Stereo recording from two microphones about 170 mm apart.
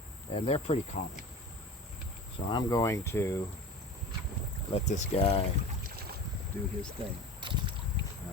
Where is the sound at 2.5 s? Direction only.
25° left (ahead or behind).